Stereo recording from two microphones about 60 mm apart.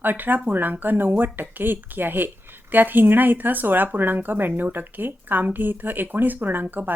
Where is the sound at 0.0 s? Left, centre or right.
Right.